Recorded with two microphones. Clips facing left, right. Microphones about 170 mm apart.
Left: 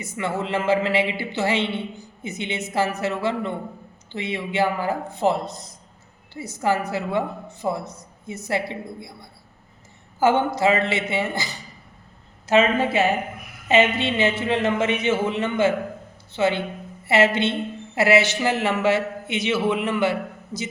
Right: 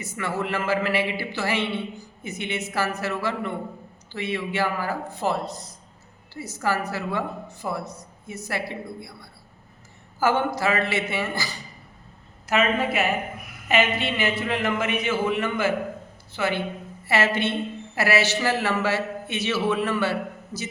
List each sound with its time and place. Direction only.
0.0 s speech: 20° left (ahead or behind)
10.2 s speech: 20° left (ahead or behind)